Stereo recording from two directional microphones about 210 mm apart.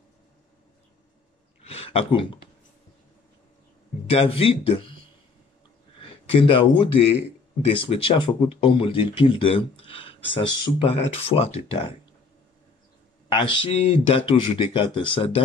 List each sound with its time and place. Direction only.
1.6 s a sound: 30° left (ahead or behind)
4.1 s speech: 25° left (ahead or behind)
13.3 s speech: 25° left (ahead or behind)